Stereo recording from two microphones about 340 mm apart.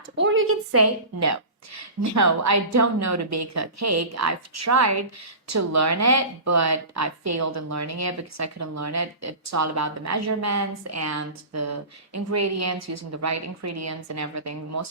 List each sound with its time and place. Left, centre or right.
0.2 s speech: right